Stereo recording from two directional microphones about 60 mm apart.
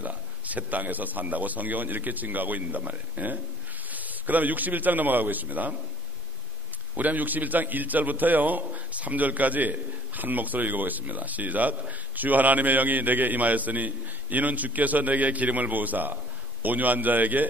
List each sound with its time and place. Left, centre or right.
0.0 s a man's voice: right
7.0 s a man's voice: right